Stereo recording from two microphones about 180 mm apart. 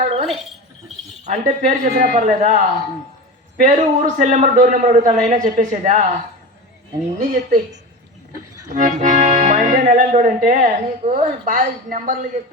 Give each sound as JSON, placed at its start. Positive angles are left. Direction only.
{"t": 0.0, "sound": "a sound", "side_deg": -35}
{"t": 1.2, "sound": "a man's voice", "side_deg": -45}
{"t": 7.2, "sound": "a man's voice", "side_deg": -45}
{"t": 8.7, "sound": "accordion", "side_deg": -40}
{"t": 10.2, "sound": "a man's voice", "side_deg": -45}